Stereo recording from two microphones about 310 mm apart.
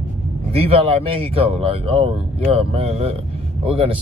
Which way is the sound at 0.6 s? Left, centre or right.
Centre.